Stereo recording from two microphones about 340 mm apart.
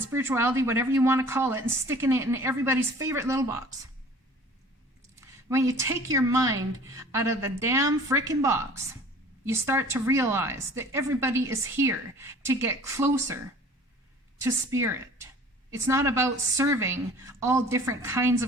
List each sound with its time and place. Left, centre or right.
0.1 s speech: centre
5.2 s speech: centre
14.4 s speech: centre